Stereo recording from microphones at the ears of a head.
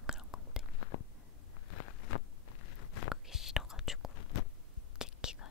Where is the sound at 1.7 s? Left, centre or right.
Left.